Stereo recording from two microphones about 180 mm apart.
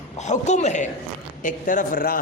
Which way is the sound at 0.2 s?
40° left (ahead or behind).